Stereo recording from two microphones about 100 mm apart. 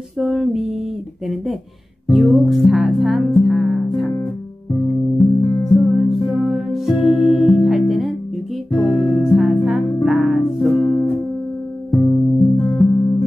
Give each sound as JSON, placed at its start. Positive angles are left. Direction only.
{"t": 0.2, "sound": "music", "side_deg": -5}
{"t": 2.0, "sound": "music", "side_deg": 0}
{"t": 10.7, "sound": "music", "side_deg": 20}